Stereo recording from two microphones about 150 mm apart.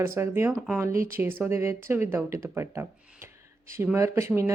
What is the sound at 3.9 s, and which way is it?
Speech, 20° right (ahead or behind).